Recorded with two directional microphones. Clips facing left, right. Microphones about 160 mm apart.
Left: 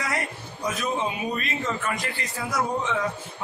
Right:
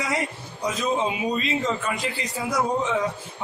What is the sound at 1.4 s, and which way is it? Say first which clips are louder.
A man's voice: right 4 dB; 15° right (ahead or behind).